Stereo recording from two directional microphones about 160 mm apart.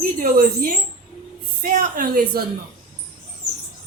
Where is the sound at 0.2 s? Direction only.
60° right (ahead or behind).